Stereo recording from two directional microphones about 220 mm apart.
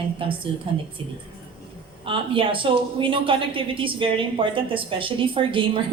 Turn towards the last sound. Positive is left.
turn(degrees=-25)  # may be behind; listen again after turning